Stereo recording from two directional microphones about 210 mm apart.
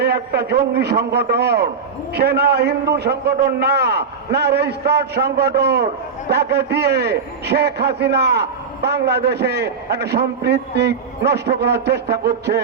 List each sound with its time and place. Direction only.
0.0 s a man's voice: 50° right (ahead or behind)